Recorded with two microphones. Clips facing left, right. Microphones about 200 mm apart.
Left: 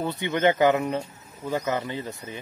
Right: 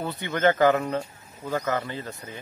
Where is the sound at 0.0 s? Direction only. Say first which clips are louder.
Left 1 dB; 20° left (ahead or behind).